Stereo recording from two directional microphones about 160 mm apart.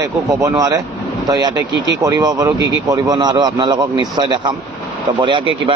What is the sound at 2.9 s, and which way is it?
A man's voice, 25° right (ahead or behind).